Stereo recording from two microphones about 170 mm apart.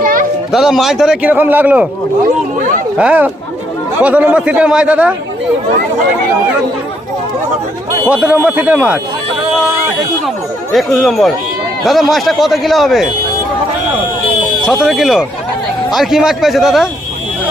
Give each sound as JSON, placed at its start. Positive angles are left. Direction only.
{"t": 0.0, "sound": "a sound", "side_deg": -55}
{"t": 0.5, "sound": "a man's voice", "side_deg": 0}
{"t": 3.0, "sound": "speech", "side_deg": -10}
{"t": 8.1, "sound": "speech", "side_deg": -10}
{"t": 10.2, "sound": "a man's voice", "side_deg": 0}
{"t": 14.7, "sound": "a man's voice", "side_deg": -5}